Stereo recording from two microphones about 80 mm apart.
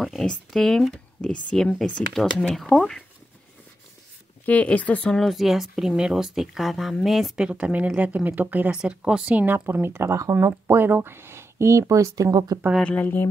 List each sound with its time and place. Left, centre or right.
0.0 s speech: centre
4.5 s speech: centre
5.1 s speech: centre
7.4 s speech: centre; by 12.5 s right
12.8 s speech: left